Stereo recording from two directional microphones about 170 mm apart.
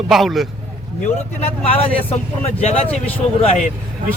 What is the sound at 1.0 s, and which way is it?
Speech, 35° left (ahead or behind).